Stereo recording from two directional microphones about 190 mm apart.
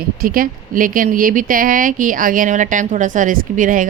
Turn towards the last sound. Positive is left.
turn(degrees=-45)  # may be behind; listen again after turning